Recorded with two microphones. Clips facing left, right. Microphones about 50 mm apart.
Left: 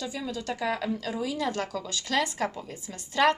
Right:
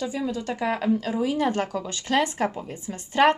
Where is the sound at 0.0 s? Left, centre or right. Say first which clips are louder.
Right 5 dB; right.